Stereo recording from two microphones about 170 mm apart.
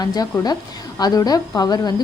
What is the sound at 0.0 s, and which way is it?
A woman's voice, 20° left (ahead or behind).